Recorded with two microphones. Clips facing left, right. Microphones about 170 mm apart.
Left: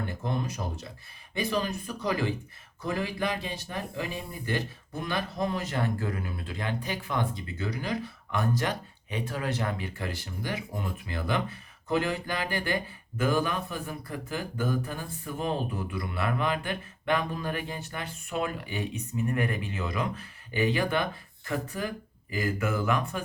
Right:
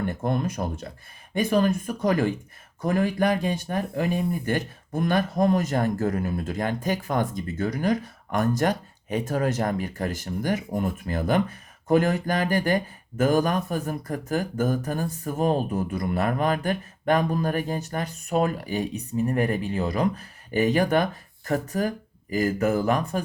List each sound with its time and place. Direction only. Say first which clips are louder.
0.1 s speech: right 6 dB; 50° right (ahead or behind)